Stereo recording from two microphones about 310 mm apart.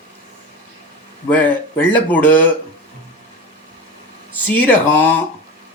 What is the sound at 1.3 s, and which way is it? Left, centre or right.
Speech, centre.